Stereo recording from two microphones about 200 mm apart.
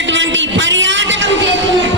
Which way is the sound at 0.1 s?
65° right (ahead or behind).